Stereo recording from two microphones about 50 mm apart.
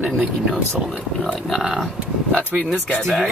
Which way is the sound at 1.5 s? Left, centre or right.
Centre.